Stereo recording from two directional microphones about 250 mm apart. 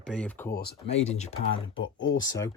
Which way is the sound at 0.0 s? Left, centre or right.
Centre.